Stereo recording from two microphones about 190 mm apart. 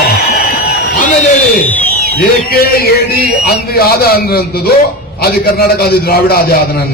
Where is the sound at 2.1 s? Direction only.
55° left (ahead or behind).